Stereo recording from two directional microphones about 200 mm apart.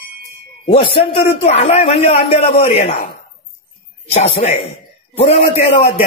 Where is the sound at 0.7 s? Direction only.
25° left (ahead or behind).